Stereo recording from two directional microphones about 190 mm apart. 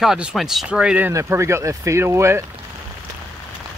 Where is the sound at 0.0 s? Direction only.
5° right (ahead or behind).